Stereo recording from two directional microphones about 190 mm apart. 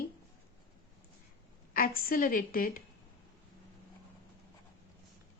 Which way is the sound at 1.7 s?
50° left (ahead or behind).